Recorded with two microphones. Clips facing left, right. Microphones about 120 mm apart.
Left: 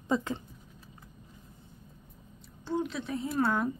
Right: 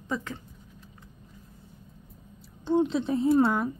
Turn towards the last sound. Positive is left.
turn(degrees=-25)  # may be behind; listen again after turning